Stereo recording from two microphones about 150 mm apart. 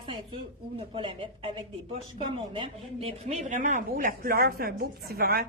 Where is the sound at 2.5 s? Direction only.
40° right (ahead or behind); by 5.4 s 90° right.